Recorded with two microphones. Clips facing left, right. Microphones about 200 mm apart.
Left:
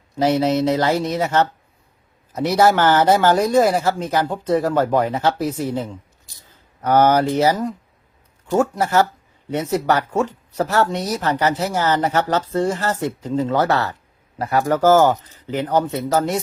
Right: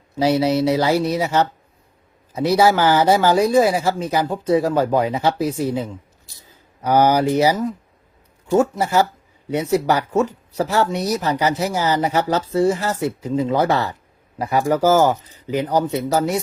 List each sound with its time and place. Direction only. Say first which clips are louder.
0.2 s speech: even; 10° right (ahead or behind)